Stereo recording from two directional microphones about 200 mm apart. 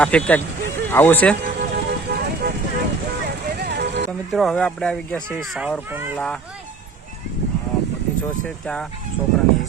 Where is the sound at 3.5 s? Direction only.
55° right (ahead or behind).